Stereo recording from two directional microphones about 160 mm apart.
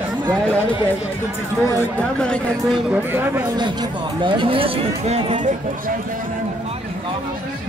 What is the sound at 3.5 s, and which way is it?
Speech, 25° right (ahead or behind).